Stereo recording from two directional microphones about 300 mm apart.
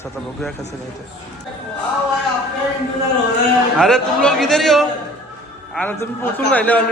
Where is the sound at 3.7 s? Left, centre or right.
Centre.